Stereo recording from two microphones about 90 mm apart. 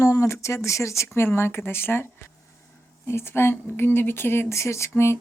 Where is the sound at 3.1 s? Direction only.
25° left (ahead or behind).